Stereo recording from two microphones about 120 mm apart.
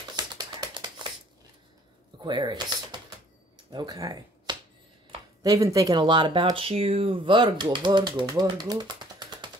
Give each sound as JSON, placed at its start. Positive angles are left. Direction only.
{"t": 0.1, "sound": "typing", "side_deg": -35}
{"t": 2.2, "sound": "speech", "side_deg": -40}